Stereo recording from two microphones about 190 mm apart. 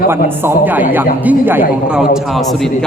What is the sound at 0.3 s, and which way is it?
A woman's voice, 10° right (ahead or behind).